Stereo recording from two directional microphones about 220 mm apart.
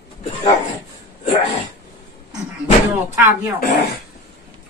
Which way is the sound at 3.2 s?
10° right (ahead or behind).